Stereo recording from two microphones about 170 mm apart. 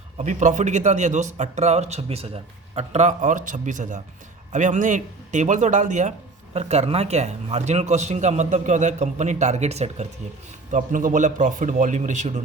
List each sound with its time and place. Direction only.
0.2 s speech: 45° right (ahead or behind)